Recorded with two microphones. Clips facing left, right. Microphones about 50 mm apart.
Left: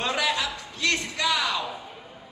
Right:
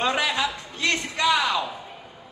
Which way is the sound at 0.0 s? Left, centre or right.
Right.